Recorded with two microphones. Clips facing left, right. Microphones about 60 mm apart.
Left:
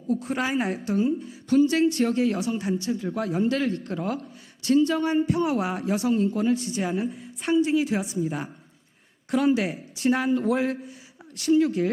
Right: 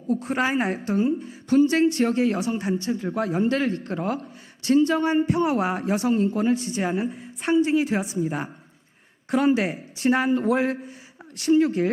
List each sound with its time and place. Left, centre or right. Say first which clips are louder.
0.1 s a woman's voice: right 2 dB; right
0.7 s a woman's voice: right 1 dB; right
4.6 s a woman's voice: right 2 dB; right
5.5 s a man's voice: right 2 dB; right
6.7 s a man's voice: right 2 dB; right
6.9 s a woman's voice: right 1 dB; right
7.7 s a man's voice: right 1 dB; right
8.0 s a woman's voice: right 1 dB; right
9.4 s a woman's voice: right 2 dB; right